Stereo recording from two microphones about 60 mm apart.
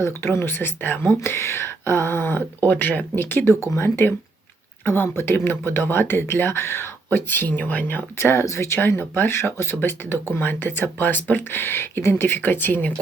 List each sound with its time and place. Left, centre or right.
0.0 s speech: left
1.2 s speech: left
2.6 s speech: left
3.2 s speech: left
8.2 s speech: left